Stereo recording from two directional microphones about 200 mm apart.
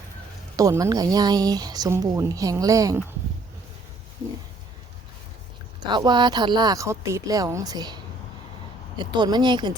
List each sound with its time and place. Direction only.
0.5 s speech: 15° right (ahead or behind)
5.9 s speech: 20° right (ahead or behind)
9.0 s speech: 20° right (ahead or behind)